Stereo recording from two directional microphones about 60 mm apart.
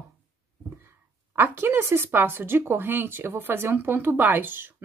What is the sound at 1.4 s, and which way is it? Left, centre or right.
Speech, right.